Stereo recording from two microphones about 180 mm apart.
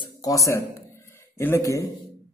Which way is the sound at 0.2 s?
20° left (ahead or behind).